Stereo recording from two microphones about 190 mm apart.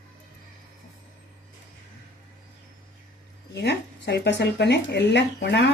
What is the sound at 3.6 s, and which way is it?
Speech, 60° left (ahead or behind).